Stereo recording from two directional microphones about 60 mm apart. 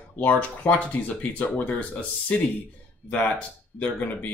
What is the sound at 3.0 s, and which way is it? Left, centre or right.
Speech, left.